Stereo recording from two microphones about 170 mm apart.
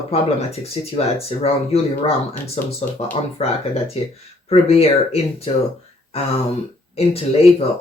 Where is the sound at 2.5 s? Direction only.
40° left (ahead or behind).